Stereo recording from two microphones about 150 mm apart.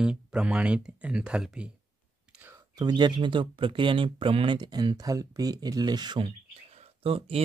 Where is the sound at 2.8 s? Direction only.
30° right (ahead or behind).